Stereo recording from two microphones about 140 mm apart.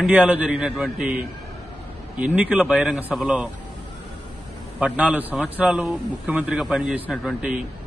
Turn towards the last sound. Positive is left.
turn(degrees=-5)  # may be behind; listen again after turning